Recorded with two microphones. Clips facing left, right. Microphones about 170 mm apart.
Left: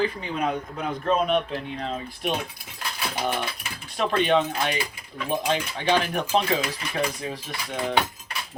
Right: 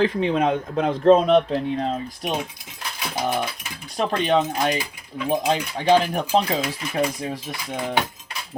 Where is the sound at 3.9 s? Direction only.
40° right (ahead or behind).